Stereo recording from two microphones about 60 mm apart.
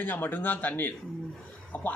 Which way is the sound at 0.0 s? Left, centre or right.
Left.